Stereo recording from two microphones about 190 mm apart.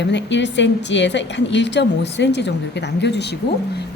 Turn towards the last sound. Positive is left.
turn(degrees=60)  # may be behind; listen again after turning